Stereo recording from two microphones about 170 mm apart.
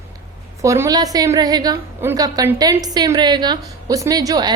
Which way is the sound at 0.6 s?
20° right (ahead or behind).